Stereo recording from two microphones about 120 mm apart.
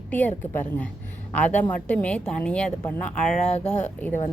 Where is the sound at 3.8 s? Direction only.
15° left (ahead or behind).